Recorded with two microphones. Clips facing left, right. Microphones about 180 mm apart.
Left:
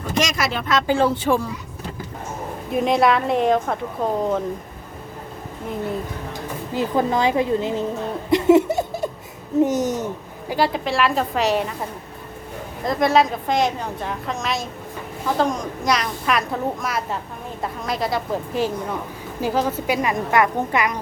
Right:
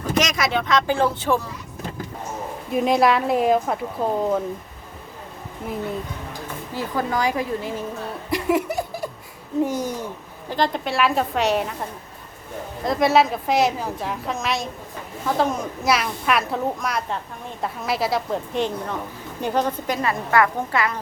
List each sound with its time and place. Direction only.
0.2 s a woman's voice: centre (ahead or behind)
2.7 s a woman's voice: centre (ahead or behind)
6.7 s a woman's voice: 25° left (ahead or behind)
8.3 s giggle: 25° left (ahead or behind)
9.6 s a woman's voice: 20° left (ahead or behind)
10.5 s a woman's voice: 5° left (ahead or behind)
12.8 s a woman's voice: centre (ahead or behind); by 21.0 s 15° left (ahead or behind)